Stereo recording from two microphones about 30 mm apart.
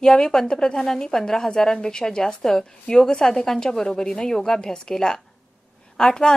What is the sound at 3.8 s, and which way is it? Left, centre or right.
A woman's voice, centre.